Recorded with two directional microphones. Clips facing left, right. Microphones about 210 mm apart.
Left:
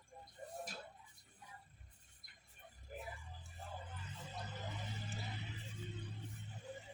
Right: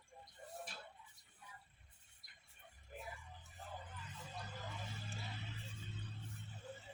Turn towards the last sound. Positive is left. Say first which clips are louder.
# left 2 dB
turn(degrees=15)  # may be behind; listen again after turning